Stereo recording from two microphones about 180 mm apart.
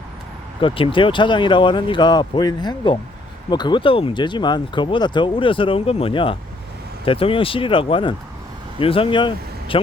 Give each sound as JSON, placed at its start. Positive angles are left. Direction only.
{"t": 0.6, "sound": "speech", "side_deg": 30}